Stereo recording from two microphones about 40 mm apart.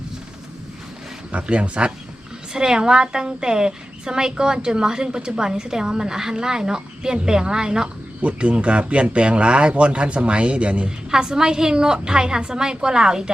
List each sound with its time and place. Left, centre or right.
1.3 s speech: right
2.5 s a woman's voice: centre
8.2 s a woman's voice: right
11.1 s a woman's voice: centre